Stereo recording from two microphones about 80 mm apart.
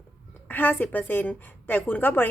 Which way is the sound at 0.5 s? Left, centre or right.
Left.